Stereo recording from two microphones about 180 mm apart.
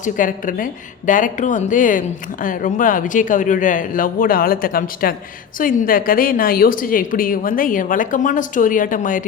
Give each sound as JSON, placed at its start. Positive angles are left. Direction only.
{"t": 0.0, "sound": "speech", "side_deg": 50}